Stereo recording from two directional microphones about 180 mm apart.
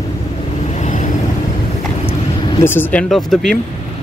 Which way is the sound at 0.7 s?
40° left (ahead or behind).